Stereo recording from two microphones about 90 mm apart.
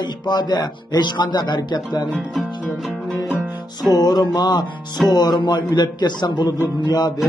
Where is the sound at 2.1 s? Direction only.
Centre (ahead or behind).